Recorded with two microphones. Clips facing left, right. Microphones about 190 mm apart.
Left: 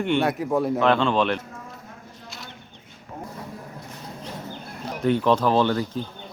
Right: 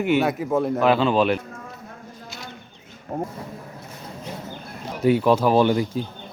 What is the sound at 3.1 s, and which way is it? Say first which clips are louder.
Speech: right 10 dB; 50° right (ahead or behind).